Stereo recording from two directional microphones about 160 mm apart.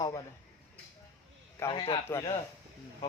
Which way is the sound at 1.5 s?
30° left (ahead or behind).